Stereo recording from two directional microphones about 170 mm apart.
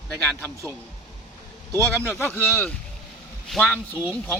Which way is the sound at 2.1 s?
15° left (ahead or behind).